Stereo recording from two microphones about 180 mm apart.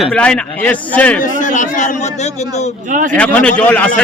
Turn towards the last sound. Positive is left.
turn(degrees=5)  # may be behind; listen again after turning